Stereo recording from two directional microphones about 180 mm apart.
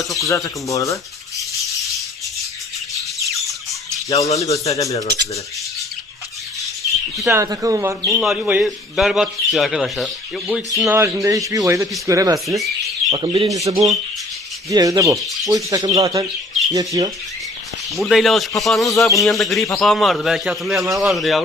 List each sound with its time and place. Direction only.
0.0 s speech: centre (ahead or behind)
0.3 s speech: 20° left (ahead or behind)
3.2 s squawk: centre (ahead or behind)
4.4 s speech: 15° left (ahead or behind)
7.3 s speech: 15° right (ahead or behind)
8.0 s speech: centre (ahead or behind); by 17.1 s 20° right (ahead or behind)
17.9 s speech: centre (ahead or behind)